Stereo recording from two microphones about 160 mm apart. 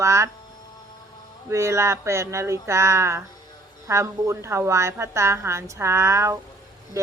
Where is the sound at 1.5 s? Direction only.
20° right (ahead or behind).